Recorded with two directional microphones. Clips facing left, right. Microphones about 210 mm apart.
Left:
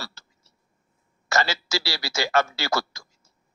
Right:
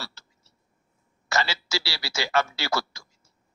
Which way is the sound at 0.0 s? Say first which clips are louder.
Left 1 dB; 45° left (ahead or behind).